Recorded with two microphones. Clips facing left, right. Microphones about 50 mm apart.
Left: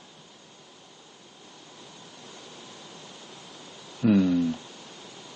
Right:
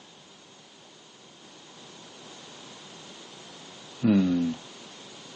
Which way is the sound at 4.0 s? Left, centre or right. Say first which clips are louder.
Left 1 dB; centre.